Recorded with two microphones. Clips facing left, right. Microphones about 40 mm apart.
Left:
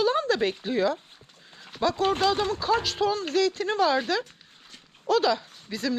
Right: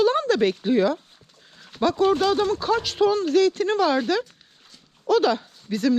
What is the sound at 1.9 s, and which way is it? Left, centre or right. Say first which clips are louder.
Speech: right 6 dB; left.